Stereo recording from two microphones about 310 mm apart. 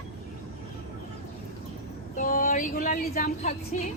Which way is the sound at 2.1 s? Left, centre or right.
Left.